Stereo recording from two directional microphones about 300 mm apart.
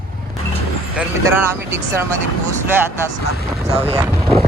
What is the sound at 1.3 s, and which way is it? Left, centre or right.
Speech, centre.